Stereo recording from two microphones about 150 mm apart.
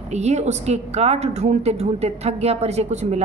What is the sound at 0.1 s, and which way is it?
Speech, 50° right (ahead or behind).